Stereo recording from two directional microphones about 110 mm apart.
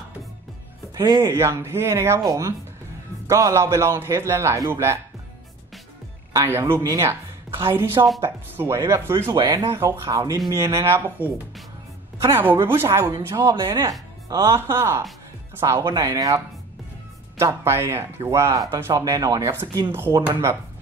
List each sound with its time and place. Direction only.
0.9 s speech: 40° right (ahead or behind)
1.2 s a man's voice: 25° right (ahead or behind)
6.4 s a man's voice: 20° right (ahead or behind)
9.3 s a man's voice: 40° right (ahead or behind)
13.4 s a man's voice: 40° right (ahead or behind)
15.6 s a man's voice: 35° right (ahead or behind)